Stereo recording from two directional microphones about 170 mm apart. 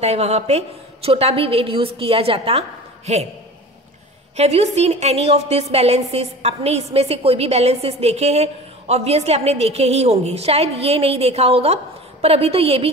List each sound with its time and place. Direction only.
0.0 s a woman's voice: 40° right (ahead or behind)
4.4 s a woman's voice: 40° right (ahead or behind)